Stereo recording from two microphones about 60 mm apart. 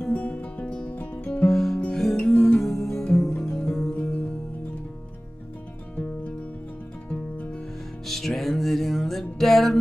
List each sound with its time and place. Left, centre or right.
0.1 s music: left
1.4 s music: centre
5.9 s music: left
8.1 s music: centre